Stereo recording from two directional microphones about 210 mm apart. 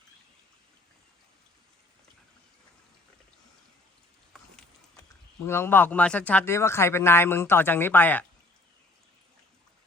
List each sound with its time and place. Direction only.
5.5 s speech: 10° left (ahead or behind)